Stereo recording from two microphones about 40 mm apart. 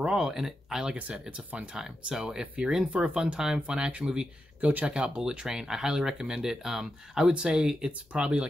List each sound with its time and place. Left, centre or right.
0.0 s speech: centre
0.3 s speech: centre
2.6 s speech: right
4.6 s speech: right
4.8 s speech: right